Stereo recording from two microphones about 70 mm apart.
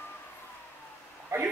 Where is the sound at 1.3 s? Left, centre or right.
Right.